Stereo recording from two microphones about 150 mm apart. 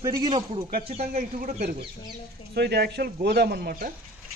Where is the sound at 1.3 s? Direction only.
65° right (ahead or behind).